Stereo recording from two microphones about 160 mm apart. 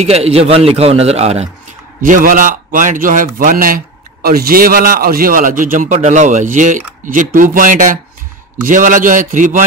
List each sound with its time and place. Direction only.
0.0 s a man's voice: 40° right (ahead or behind)
2.0 s a man's voice: 55° right (ahead or behind)